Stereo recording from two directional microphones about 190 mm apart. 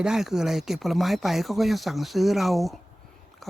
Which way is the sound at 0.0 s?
Centre (ahead or behind).